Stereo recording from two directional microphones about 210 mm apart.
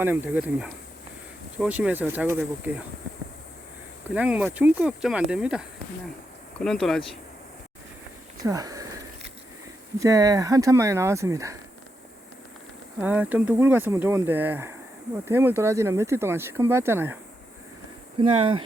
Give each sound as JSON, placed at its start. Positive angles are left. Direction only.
{"t": 0.0, "sound": "speech", "side_deg": -10}
{"t": 4.1, "sound": "speech", "side_deg": -5}
{"t": 8.4, "sound": "speech", "side_deg": -15}
{"t": 10.0, "sound": "speech", "side_deg": -15}
{"t": 13.0, "sound": "speech", "side_deg": -5}
{"t": 18.2, "sound": "speech", "side_deg": -25}